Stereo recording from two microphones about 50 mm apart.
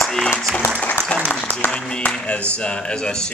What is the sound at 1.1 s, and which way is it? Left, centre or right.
Applause, left.